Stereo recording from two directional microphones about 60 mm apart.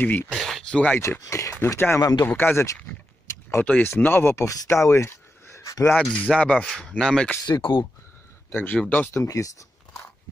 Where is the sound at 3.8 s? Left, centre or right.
Left.